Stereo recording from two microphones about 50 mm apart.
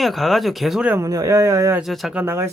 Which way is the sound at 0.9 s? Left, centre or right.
Right.